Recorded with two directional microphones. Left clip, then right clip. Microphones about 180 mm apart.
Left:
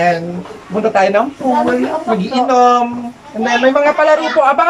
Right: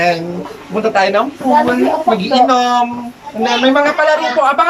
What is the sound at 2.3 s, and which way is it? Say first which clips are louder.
Speech: left 2 dB; 10° left (ahead or behind).